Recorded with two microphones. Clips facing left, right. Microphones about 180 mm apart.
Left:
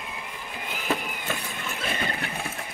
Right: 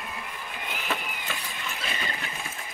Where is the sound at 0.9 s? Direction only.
50° left (ahead or behind).